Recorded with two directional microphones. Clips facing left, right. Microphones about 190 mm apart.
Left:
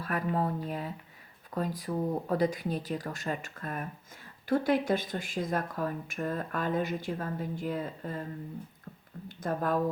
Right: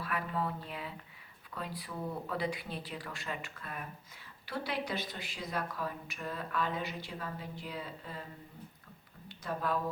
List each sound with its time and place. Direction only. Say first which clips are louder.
0.0 s speech: left 5 dB; 40° left (ahead or behind)
9.4 s speech: left 5 dB; 45° left (ahead or behind)